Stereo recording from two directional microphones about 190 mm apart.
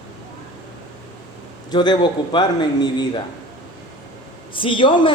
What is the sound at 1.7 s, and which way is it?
A man's voice, 25° left (ahead or behind).